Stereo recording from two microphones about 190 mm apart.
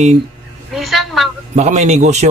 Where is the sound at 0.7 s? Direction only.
Centre (ahead or behind).